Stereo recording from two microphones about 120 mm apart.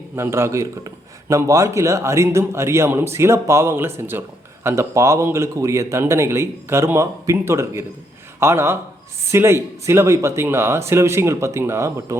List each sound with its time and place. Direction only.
0.2 s a man's voice: 20° right (ahead or behind)